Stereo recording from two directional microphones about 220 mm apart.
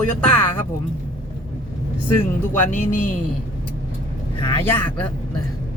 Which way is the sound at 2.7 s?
35° left (ahead or behind).